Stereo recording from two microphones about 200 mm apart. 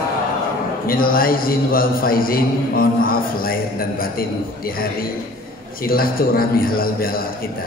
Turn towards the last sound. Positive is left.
turn(degrees=45)  # may be behind; listen again after turning